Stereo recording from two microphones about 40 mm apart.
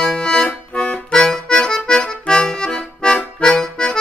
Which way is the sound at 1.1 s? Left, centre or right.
Centre.